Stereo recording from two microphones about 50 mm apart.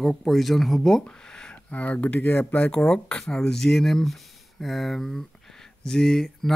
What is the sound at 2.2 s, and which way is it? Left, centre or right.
Speech, left.